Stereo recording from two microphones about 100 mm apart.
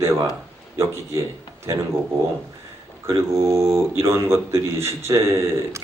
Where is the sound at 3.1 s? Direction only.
30° right (ahead or behind).